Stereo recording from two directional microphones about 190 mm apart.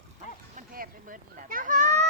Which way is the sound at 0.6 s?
45° right (ahead or behind).